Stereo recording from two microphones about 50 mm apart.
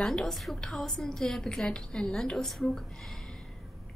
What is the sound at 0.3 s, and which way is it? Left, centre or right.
A woman's voice, centre.